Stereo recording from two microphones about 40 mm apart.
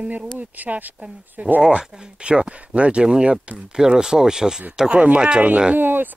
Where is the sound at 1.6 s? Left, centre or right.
Right.